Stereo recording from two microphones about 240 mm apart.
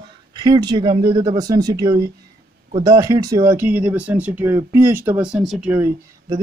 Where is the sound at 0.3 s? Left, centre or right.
Centre.